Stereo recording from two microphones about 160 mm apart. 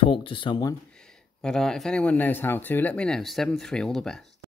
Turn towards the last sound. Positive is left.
turn(degrees=0)  # may be behind; listen again after turning